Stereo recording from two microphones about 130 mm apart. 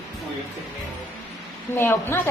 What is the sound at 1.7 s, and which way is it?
Speech, 15° left (ahead or behind).